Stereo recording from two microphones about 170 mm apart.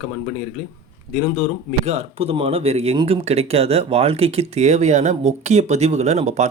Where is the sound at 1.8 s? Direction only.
40° right (ahead or behind).